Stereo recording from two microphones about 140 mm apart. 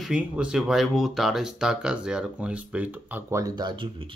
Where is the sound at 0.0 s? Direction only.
5° right (ahead or behind).